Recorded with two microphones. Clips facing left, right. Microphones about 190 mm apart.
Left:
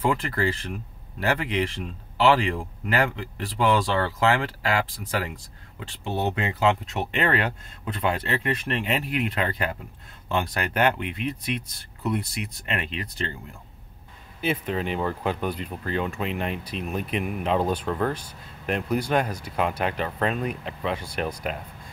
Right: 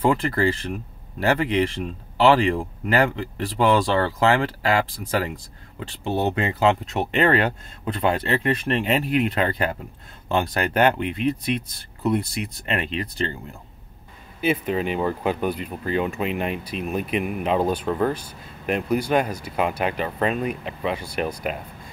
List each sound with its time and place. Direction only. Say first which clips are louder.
0.0 s speech: right 4 dB; 35° right (ahead or behind)
14.4 s speech: right 4 dB; 10° right (ahead or behind)